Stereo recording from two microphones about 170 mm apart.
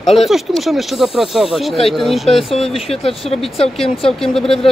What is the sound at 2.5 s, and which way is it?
Speech, 35° left (ahead or behind).